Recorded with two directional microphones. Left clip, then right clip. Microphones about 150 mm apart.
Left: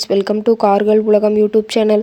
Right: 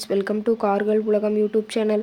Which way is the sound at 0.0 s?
40° left (ahead or behind).